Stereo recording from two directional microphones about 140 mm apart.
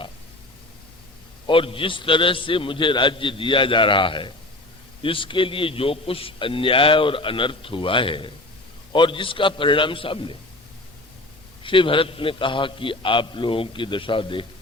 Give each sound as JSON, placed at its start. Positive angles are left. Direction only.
{"t": 1.5, "sound": "a man's voice", "side_deg": 40}
{"t": 11.6, "sound": "a man's voice", "side_deg": 40}